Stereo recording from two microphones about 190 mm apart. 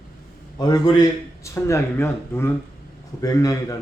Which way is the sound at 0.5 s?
20° left (ahead or behind).